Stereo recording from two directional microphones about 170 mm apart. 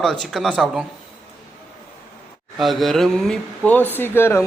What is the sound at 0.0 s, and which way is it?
Speech, centre (ahead or behind).